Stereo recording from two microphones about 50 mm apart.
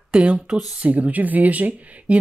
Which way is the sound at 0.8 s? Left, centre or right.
Right.